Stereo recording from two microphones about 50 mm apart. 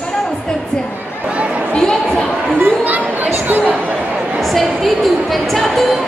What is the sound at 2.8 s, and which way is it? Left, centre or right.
Chatter, right.